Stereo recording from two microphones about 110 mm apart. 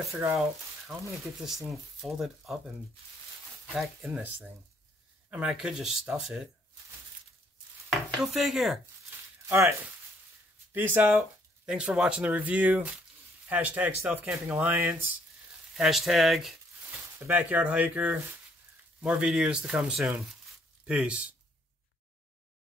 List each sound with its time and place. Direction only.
0.0 s speech: centre (ahead or behind)
3.7 s speech: centre (ahead or behind)
4.1 s speech: 15° right (ahead or behind)
7.9 s chopping: centre (ahead or behind)
9.5 s speech: 25° right (ahead or behind)
15.7 s speech: centre (ahead or behind)
17.3 s speech: 15° right (ahead or behind)